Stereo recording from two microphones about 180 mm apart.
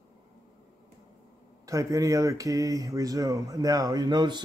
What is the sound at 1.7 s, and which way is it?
Speech, 20° right (ahead or behind).